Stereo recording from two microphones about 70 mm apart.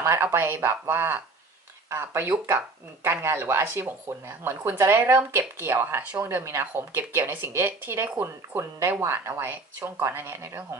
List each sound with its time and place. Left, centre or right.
0.0 s speech: right